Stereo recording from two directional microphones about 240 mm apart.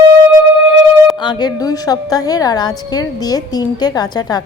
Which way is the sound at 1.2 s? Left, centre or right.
Centre.